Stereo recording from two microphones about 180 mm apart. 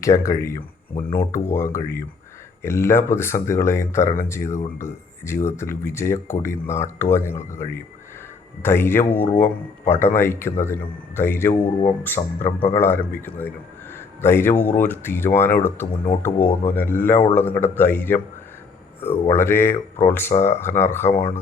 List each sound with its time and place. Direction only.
0.0 s speech: 15° left (ahead or behind)
19.3 s speech: 15° left (ahead or behind)